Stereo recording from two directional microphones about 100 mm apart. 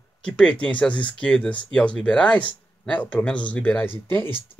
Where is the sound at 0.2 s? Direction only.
10° left (ahead or behind).